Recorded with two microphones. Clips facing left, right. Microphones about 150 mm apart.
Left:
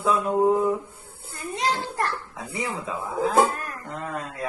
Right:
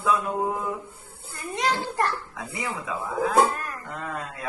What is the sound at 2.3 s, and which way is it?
Speech, 25° left (ahead or behind).